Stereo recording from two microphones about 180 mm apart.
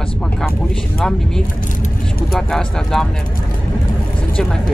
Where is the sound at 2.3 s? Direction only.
Centre (ahead or behind).